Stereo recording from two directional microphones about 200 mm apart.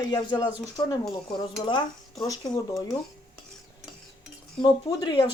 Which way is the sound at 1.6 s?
25° left (ahead or behind).